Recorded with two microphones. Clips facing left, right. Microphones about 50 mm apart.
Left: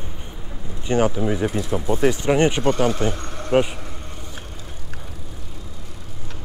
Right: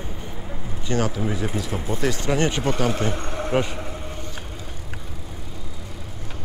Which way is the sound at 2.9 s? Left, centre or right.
Centre.